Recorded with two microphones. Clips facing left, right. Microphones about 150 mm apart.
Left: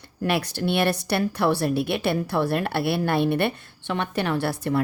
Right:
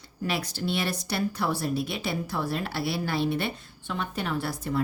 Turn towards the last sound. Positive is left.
turn(degrees=65)  # may be behind; listen again after turning